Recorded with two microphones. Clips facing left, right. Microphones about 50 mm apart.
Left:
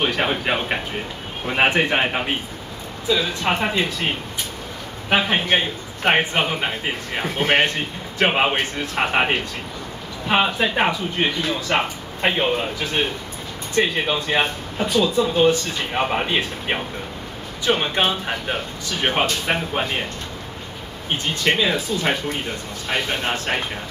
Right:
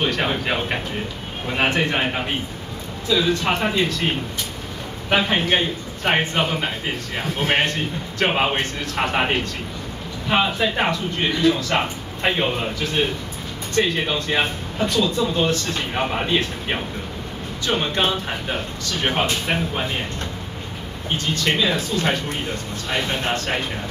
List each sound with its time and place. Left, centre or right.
0.0 s speech: centre
1.5 s a man's voice: left
5.1 s a man's voice: centre
12.3 s speech: centre
21.5 s speech: centre
22.8 s a man's voice: centre